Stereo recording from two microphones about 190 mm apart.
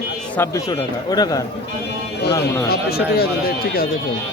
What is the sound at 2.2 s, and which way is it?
Speech, 60° left (ahead or behind).